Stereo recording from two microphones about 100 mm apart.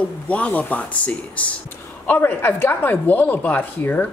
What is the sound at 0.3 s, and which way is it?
Speech, 15° left (ahead or behind).